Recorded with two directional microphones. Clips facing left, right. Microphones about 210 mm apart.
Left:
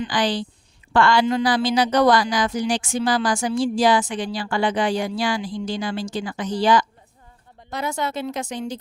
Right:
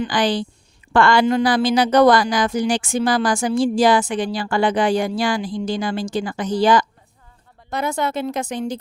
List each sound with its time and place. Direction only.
0.0 s a woman's voice: 55° right (ahead or behind)